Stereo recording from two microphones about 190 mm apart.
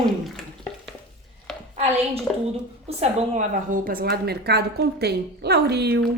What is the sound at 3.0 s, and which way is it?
A woman's voice, 35° right (ahead or behind).